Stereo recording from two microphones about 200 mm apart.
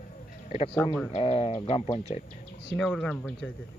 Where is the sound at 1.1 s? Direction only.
30° left (ahead or behind).